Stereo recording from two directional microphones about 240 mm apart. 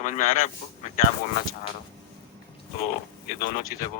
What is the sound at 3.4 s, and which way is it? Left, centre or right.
Speech, left.